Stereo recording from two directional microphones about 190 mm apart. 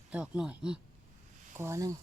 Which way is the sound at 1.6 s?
15° right (ahead or behind).